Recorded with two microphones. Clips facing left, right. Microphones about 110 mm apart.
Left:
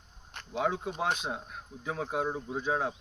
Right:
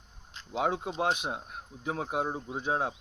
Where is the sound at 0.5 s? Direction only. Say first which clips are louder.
Right 1 dB; 60° right (ahead or behind).